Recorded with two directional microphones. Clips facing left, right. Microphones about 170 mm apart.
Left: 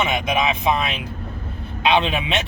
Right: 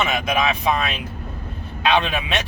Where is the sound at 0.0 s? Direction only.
20° left (ahead or behind).